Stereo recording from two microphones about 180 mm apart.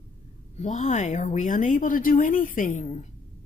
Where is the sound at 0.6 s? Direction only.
45° left (ahead or behind).